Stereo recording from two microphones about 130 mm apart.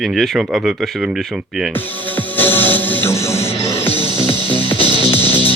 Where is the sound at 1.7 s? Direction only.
15° left (ahead or behind).